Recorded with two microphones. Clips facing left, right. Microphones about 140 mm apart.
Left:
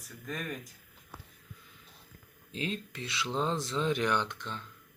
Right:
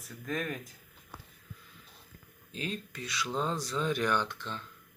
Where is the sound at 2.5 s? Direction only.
25° left (ahead or behind).